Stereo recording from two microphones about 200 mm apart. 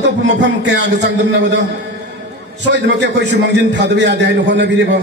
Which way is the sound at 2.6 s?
60° right (ahead or behind).